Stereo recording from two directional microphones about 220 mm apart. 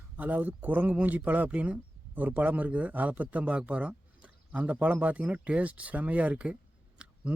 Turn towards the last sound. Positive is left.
turn(degrees=-5)  # may be behind; listen again after turning